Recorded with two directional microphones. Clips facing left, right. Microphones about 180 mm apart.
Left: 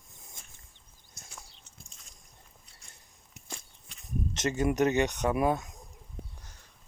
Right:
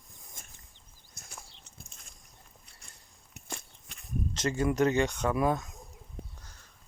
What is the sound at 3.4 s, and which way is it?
Walk, 60° right (ahead or behind).